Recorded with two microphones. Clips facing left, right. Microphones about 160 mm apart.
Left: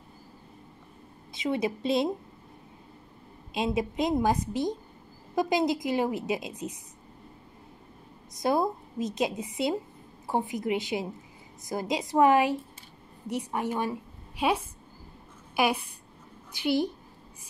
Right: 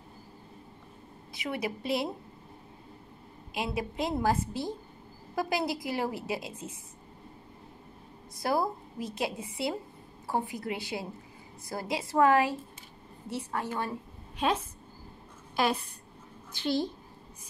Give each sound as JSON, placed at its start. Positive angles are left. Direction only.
{"t": 1.3, "sound": "a woman's voice", "side_deg": 20}
{"t": 3.5, "sound": "a woman's voice", "side_deg": 20}
{"t": 8.4, "sound": "a woman's voice", "side_deg": 20}